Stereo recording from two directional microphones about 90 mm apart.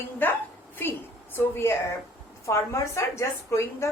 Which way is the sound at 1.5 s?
30° left (ahead or behind).